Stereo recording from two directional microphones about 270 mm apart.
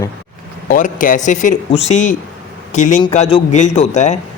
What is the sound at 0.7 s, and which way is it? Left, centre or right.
A man's voice, left.